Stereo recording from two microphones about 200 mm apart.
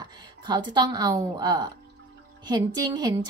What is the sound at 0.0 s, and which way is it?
A woman's voice, 20° right (ahead or behind).